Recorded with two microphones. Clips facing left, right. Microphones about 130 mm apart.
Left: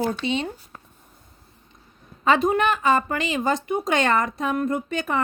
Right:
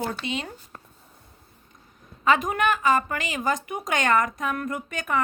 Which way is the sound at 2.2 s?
30° left (ahead or behind).